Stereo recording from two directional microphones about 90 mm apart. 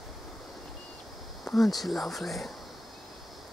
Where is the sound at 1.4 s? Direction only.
Centre (ahead or behind).